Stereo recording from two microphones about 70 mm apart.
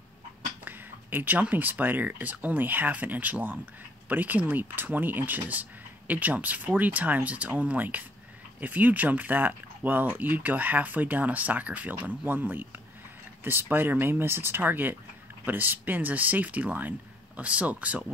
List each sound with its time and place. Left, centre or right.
0.7 s speech: right